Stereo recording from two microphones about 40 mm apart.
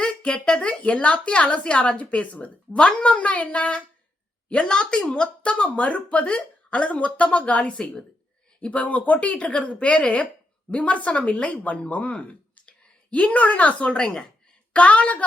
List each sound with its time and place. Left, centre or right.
0.0 s speech: left
14.7 s speech: left